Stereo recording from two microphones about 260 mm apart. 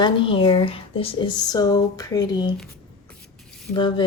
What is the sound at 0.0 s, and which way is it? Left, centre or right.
Speech, centre.